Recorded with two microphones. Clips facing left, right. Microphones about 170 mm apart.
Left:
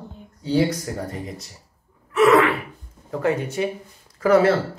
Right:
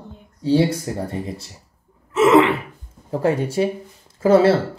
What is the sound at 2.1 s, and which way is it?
Gasp, 20° right (ahead or behind).